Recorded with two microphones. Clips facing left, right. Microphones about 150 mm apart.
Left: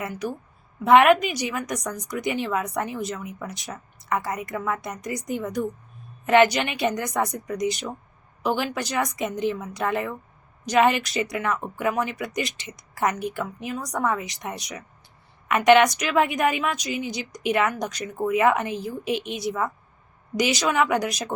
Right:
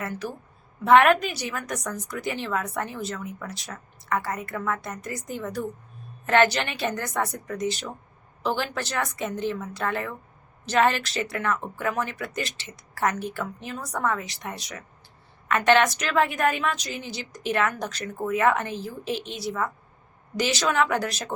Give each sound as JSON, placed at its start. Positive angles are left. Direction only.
{"t": 0.0, "sound": "a woman's voice", "side_deg": 15}